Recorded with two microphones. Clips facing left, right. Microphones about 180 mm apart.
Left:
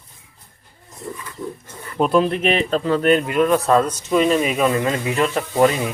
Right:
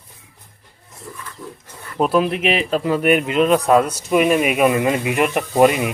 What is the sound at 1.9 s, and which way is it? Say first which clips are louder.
A man's voice: even; 5° right (ahead or behind).